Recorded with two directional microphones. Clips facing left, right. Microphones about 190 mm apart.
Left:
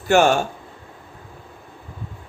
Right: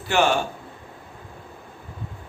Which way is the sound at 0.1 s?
45° left (ahead or behind).